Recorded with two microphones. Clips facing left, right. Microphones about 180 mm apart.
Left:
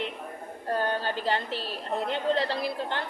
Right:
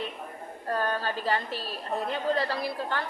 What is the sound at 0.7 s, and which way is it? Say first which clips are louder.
A woman's voice: left 1 dB; 25° left (ahead or behind).